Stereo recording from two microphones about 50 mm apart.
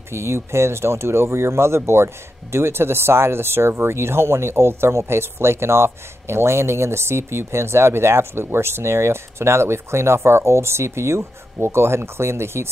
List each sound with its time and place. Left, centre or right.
0.1 s speech: right